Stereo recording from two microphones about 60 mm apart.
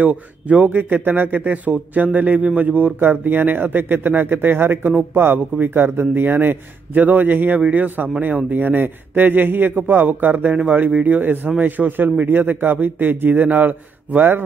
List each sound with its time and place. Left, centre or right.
0.0 s a man's voice: right